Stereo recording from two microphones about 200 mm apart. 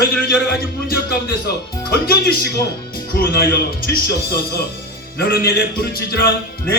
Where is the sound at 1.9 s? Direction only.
50° left (ahead or behind).